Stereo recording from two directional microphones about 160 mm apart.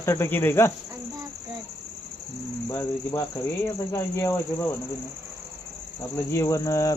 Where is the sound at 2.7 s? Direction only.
20° left (ahead or behind).